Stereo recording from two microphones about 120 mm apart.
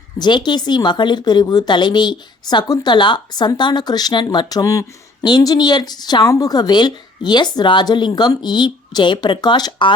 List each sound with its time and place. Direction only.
0.2 s speech: 40° left (ahead or behind)